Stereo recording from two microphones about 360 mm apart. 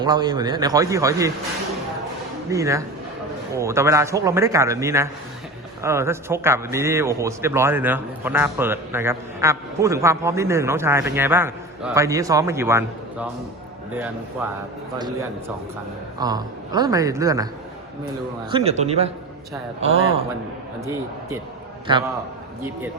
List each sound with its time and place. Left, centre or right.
0.0 s a man's voice: centre
2.5 s a man's voice: centre
14.9 s a man's voice: centre
18.5 s a man's voice: centre
21.8 s a man's voice: centre